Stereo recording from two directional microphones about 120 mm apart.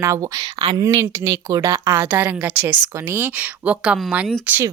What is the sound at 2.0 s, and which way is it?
Speech, 15° right (ahead or behind).